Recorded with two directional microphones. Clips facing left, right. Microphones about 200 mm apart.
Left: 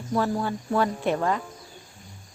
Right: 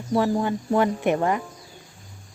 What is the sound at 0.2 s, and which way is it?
Speech, 20° right (ahead or behind).